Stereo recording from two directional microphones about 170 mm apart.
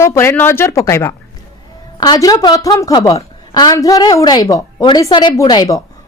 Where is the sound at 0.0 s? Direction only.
15° left (ahead or behind).